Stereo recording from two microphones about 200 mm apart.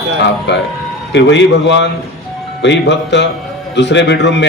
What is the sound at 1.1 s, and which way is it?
A man's voice, 60° left (ahead or behind).